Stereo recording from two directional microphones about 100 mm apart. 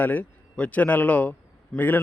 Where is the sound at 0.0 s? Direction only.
15° left (ahead or behind).